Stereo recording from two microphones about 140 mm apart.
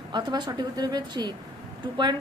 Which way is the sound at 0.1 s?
35° right (ahead or behind).